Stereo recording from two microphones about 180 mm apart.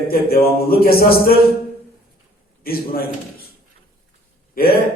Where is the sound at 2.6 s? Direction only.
55° left (ahead or behind).